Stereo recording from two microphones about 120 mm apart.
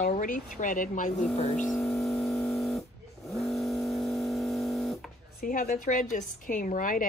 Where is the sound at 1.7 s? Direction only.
Centre (ahead or behind).